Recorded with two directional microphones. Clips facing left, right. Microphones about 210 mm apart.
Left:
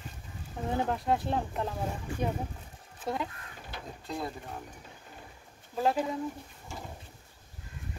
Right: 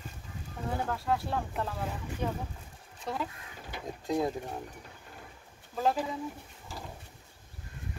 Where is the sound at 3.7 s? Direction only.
15° right (ahead or behind).